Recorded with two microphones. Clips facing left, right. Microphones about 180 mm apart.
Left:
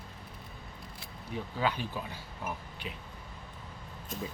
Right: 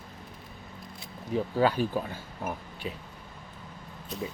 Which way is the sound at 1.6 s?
45° right (ahead or behind).